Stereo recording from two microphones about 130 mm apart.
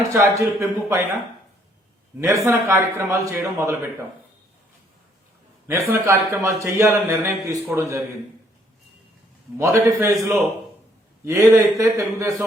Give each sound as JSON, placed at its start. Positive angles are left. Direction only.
{"t": 0.1, "sound": "a man's voice", "side_deg": -20}
{"t": 2.2, "sound": "a man's voice", "side_deg": -25}
{"t": 5.6, "sound": "a man's voice", "side_deg": -20}
{"t": 9.6, "sound": "a man's voice", "side_deg": -25}
{"t": 11.3, "sound": "a man's voice", "side_deg": -20}